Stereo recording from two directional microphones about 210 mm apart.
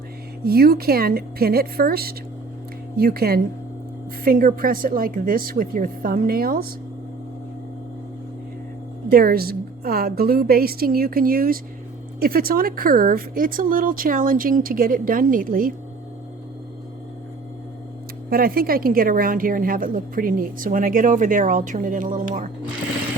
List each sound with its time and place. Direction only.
0.4 s a woman's voice: 45° right (ahead or behind)
9.0 s a woman's voice: 45° right (ahead or behind)
18.3 s a woman's voice: 45° right (ahead or behind)